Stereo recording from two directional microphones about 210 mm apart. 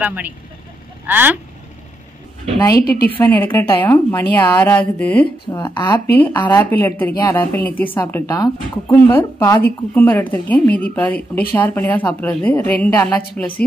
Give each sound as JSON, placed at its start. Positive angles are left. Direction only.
{"t": 0.0, "sound": "speech", "side_deg": -10}
{"t": 2.8, "sound": "a woman's voice", "side_deg": 45}
{"t": 3.2, "sound": "a woman's voice", "side_deg": 10}
{"t": 5.2, "sound": "a woman's voice", "side_deg": 20}